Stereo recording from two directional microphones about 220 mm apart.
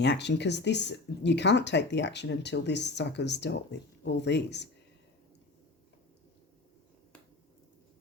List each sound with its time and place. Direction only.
0.0 s speech: 50° left (ahead or behind)